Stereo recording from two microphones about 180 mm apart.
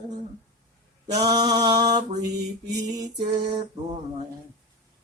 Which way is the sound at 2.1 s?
65° right (ahead or behind).